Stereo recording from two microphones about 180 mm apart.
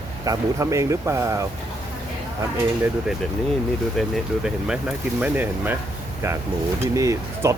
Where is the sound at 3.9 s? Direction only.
Centre (ahead or behind).